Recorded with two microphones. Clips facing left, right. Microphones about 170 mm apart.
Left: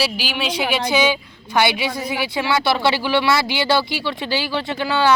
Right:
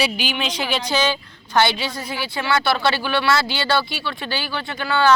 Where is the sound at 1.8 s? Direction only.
65° left (ahead or behind).